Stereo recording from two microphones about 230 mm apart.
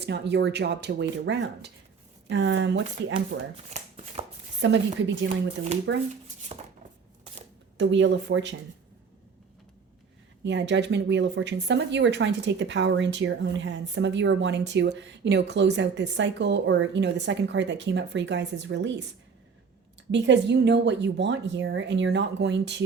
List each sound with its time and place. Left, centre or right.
0.0 s speech: right
3.7 s shuffling cards: right
4.6 s speech: right
5.9 s speech: right
7.8 s speech: right
10.4 s speech: right
20.1 s speech: right